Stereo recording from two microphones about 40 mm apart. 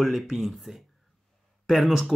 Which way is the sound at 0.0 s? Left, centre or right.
Centre.